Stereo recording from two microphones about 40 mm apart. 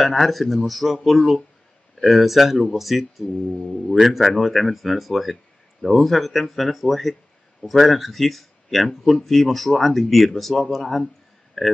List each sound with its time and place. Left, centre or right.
0.0 s speech: centre